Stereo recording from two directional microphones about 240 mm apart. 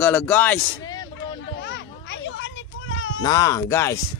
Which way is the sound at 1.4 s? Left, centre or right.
Left.